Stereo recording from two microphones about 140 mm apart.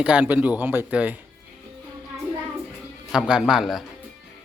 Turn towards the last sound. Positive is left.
turn(degrees=0)  # may be behind; listen again after turning